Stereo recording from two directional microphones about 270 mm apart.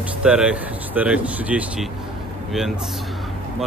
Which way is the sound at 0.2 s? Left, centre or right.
Centre.